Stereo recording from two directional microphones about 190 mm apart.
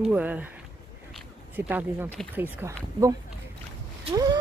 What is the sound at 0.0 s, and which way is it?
Speech, 10° right (ahead or behind).